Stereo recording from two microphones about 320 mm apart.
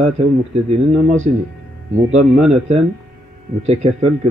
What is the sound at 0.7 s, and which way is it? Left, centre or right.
Speech, right.